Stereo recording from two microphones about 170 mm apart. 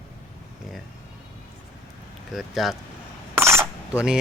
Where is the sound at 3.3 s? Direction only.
15° right (ahead or behind).